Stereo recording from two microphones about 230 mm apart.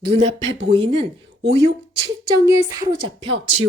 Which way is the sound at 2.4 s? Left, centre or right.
Centre.